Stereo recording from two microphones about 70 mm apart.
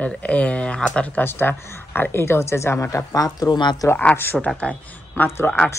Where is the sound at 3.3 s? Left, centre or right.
Left.